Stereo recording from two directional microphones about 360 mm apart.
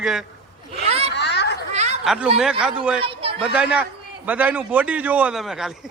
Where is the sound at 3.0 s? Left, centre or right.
Centre.